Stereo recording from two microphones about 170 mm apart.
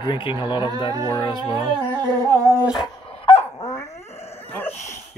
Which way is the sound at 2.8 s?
35° left (ahead or behind).